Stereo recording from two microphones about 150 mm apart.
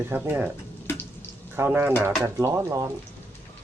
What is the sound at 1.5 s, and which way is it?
Speech, 15° right (ahead or behind).